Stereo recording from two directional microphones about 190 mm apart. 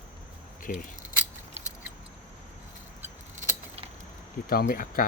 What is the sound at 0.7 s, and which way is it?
Speech, 50° left (ahead or behind).